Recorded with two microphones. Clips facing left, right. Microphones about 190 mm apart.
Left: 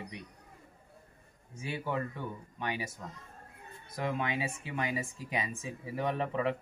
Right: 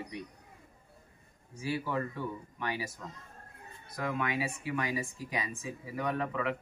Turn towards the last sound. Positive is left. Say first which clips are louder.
# left 1 dB
turn(degrees=30)  # may be behind; listen again after turning